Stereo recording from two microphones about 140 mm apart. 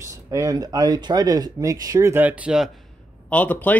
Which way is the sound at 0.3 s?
25° right (ahead or behind).